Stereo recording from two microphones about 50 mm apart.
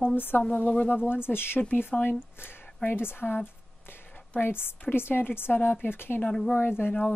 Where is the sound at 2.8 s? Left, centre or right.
Left.